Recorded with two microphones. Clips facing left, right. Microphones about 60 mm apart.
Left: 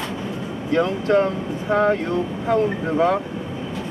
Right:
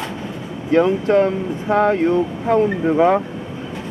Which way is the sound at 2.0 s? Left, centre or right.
Right.